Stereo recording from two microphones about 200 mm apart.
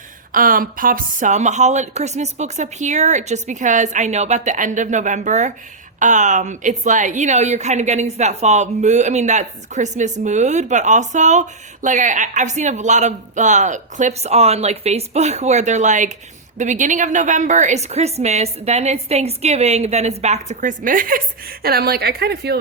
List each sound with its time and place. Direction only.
0.3 s a woman's voice: 45° right (ahead or behind)